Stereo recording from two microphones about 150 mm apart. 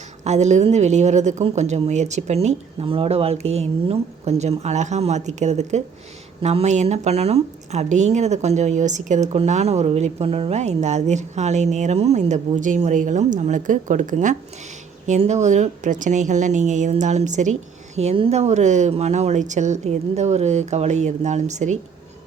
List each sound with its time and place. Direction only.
0.3 s a woman's voice: 50° right (ahead or behind)